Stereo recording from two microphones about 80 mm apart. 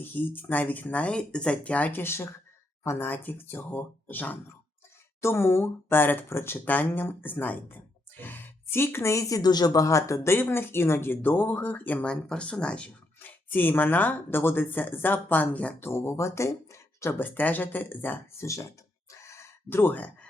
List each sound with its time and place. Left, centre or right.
0.0 s speech: left
10.3 s speech: left
12.1 s speech: centre
13.1 s speech: left
15.9 s speech: left
18.4 s speech: left
19.2 s chicken: left